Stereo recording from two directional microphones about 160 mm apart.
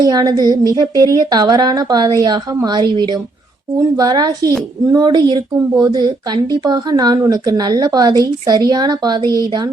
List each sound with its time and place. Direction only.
0.0 s a woman's voice: 25° right (ahead or behind)